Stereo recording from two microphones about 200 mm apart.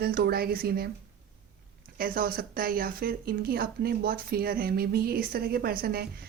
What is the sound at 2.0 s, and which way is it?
Speech, 45° right (ahead or behind).